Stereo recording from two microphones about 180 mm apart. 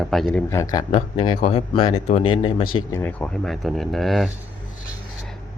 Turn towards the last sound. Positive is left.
turn(degrees=0)  # may be behind; listen again after turning